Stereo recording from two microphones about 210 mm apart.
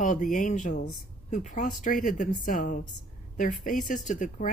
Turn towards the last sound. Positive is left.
turn(degrees=35)  # may be behind; listen again after turning